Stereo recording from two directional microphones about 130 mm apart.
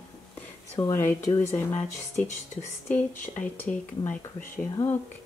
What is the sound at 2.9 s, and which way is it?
Speech, 10° left (ahead or behind).